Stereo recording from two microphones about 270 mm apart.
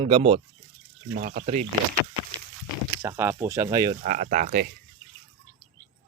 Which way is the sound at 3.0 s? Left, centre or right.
Centre.